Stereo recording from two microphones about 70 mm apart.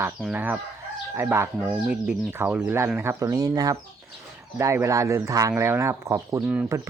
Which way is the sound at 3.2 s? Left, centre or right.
Right.